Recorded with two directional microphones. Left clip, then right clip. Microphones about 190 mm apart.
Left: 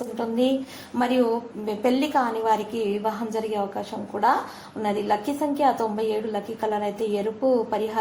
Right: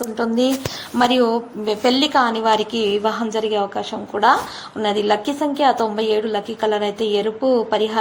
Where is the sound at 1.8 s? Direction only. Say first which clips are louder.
Right 6 dB; 35° right (ahead or behind).